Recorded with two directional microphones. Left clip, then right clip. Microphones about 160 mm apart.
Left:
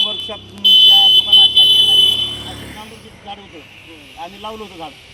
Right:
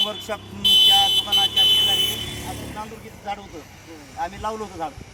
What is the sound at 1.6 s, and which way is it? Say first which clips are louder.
Vehicle: left 8 dB; 60° left (ahead or behind).